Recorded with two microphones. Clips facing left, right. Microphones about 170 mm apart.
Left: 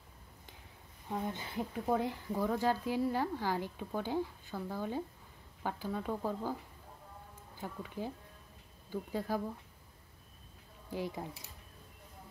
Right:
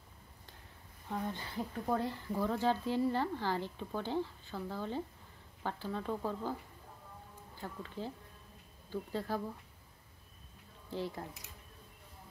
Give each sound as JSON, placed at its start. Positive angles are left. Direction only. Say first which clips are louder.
{"t": 1.0, "sound": "speech", "louder": "left 1 dB", "side_deg": 15}
{"t": 7.6, "sound": "speech", "louder": "left 2 dB", "side_deg": 15}
{"t": 10.9, "sound": "speech", "louder": "left 1 dB", "side_deg": 10}